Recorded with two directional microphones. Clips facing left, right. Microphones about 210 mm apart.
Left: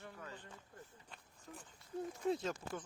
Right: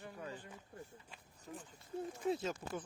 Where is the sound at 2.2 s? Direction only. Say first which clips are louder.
Even; 5° right (ahead or behind).